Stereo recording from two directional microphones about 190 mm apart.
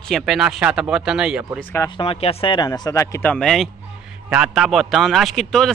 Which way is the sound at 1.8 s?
30° left (ahead or behind).